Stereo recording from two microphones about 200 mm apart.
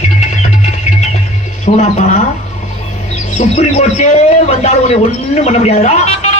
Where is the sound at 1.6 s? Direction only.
35° left (ahead or behind).